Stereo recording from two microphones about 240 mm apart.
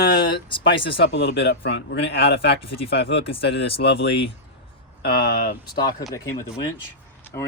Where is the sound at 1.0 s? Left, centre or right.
Left.